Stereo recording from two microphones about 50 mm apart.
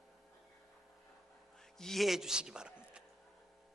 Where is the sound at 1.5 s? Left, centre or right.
Centre.